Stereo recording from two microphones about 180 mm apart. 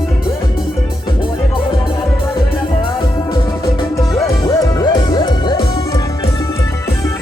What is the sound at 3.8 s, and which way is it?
Music, 15° left (ahead or behind).